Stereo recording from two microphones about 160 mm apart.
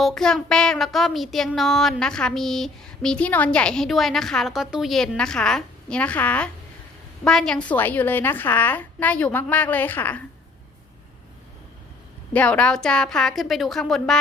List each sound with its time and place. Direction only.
0.0 s child singing: 5° left (ahead or behind)
7.3 s a woman's voice: 5° left (ahead or behind)
12.3 s child singing: 10° left (ahead or behind)